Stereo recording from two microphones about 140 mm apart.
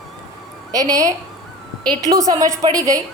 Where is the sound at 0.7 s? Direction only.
25° right (ahead or behind).